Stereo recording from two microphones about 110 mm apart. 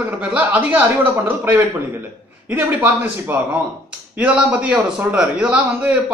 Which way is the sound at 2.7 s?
15° right (ahead or behind).